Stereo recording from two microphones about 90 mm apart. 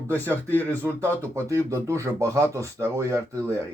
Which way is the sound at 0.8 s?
30° right (ahead or behind).